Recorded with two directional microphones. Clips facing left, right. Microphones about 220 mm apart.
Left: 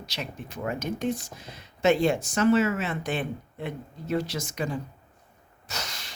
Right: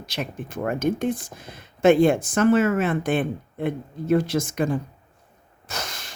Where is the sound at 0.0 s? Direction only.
50° right (ahead or behind).